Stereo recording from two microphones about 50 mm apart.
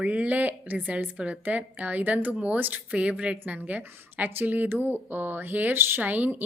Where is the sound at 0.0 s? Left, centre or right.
Right.